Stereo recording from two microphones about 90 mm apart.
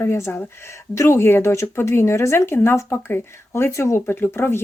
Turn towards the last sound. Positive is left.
turn(degrees=25)  # may be behind; listen again after turning